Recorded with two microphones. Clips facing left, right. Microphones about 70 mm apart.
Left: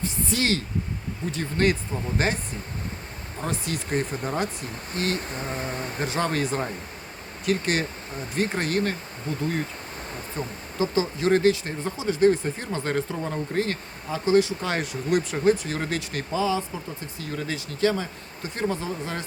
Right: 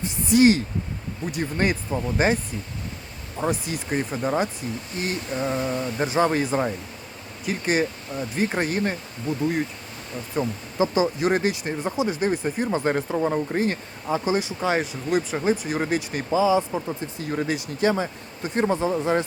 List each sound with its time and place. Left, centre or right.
0.0 s a sound: centre
1.3 s speech: centre
3.5 s speech: centre
4.9 s a sound: left
5.5 s mantra: left
6.1 s speech: centre
9.3 s speech: left
10.3 s speech: centre